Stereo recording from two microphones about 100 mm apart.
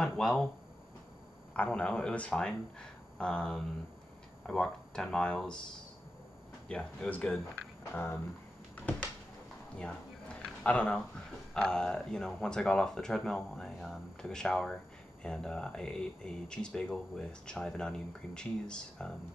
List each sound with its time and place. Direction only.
0.0 s speech: 5° left (ahead or behind)
1.5 s speech: 10° left (ahead or behind)
6.7 s speech: 10° left (ahead or behind)
9.8 s a sound: 10° left (ahead or behind)
11.5 s speech: 10° left (ahead or behind)